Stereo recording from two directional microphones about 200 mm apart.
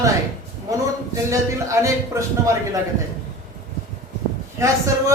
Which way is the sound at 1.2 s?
15° right (ahead or behind).